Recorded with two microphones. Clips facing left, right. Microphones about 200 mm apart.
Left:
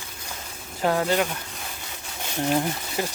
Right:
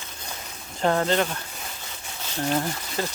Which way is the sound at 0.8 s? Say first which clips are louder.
Even; 10° left (ahead or behind).